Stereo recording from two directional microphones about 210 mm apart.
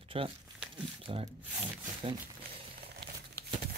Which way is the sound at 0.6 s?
5° right (ahead or behind).